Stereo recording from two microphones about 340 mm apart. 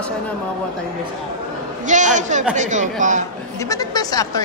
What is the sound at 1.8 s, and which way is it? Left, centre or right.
A man's voice, right.